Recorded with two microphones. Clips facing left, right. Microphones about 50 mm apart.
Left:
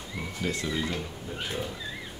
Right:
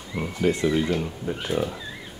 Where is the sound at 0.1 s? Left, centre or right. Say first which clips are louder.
Right 8 dB; right.